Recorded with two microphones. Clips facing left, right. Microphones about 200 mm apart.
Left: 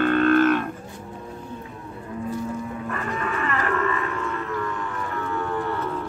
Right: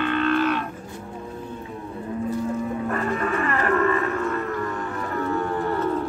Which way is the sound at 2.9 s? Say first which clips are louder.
Right 3 dB; 40° right (ahead or behind).